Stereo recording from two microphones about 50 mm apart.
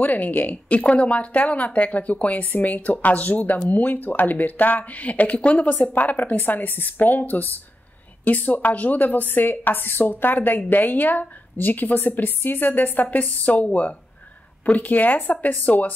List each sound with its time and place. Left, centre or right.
0.0 s speech: left